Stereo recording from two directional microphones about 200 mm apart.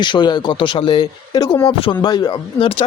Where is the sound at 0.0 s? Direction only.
20° left (ahead or behind).